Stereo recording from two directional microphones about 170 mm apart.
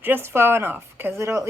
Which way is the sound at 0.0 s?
15° right (ahead or behind).